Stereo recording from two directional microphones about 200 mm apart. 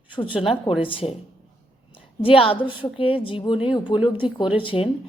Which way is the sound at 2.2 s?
25° left (ahead or behind).